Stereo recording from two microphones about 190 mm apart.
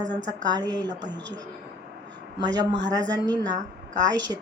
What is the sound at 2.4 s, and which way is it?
Speech, 20° right (ahead or behind).